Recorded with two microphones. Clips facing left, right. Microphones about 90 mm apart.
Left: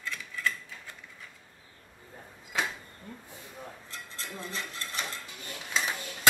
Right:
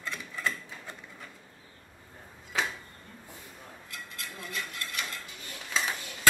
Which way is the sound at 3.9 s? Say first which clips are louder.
Right 3 dB; 30° left (ahead or behind).